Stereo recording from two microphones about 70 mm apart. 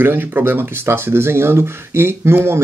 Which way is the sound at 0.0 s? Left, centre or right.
Right.